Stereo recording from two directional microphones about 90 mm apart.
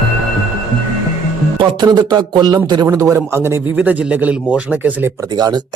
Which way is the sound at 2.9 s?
35° right (ahead or behind).